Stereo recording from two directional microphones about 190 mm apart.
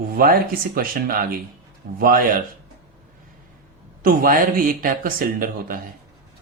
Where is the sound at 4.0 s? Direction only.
50° right (ahead or behind).